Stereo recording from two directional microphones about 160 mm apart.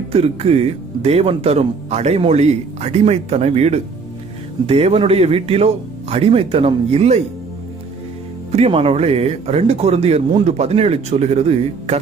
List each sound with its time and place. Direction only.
0.1 s speech: 40° right (ahead or behind)
8.5 s speech: 40° right (ahead or behind)